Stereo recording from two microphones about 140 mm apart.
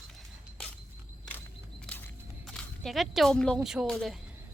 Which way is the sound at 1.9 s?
10° left (ahead or behind).